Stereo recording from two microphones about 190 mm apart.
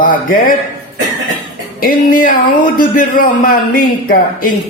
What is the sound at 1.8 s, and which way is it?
A man's voice, 45° left (ahead or behind).